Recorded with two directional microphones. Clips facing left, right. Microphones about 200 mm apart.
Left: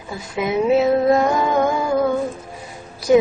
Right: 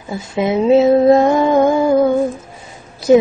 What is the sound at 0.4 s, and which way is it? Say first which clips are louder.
Female singing: right 5 dB; 25° right (ahead or behind).